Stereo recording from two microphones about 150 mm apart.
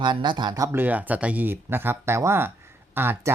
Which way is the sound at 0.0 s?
30° right (ahead or behind).